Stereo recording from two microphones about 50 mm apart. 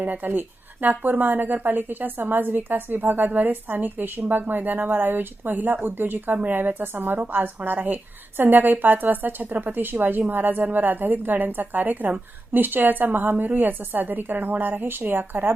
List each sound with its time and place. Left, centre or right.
0.0 s speech: right